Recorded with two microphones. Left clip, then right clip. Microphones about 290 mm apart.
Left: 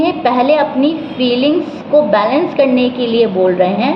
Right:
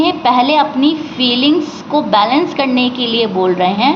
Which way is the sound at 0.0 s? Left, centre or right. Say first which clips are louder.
Right 1 dB; right.